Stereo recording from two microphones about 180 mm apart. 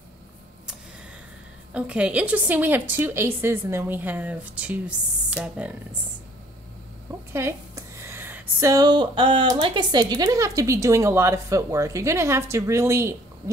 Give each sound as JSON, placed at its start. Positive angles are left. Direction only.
{"t": 1.7, "sound": "speech", "side_deg": -5}
{"t": 7.3, "sound": "speech", "side_deg": -15}